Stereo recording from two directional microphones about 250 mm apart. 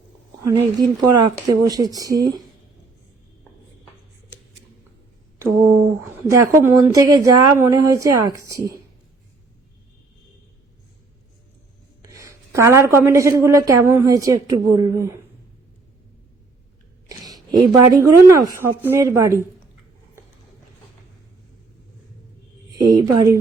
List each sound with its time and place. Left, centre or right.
1.1 s a woman's voice: centre
5.4 s a sound: centre
6.2 s a woman's voice: centre
12.0 s a woman's voice: centre
17.1 s a woman's voice: centre
22.8 s a woman's voice: centre